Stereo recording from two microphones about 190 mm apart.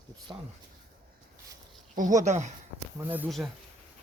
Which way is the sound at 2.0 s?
40° right (ahead or behind).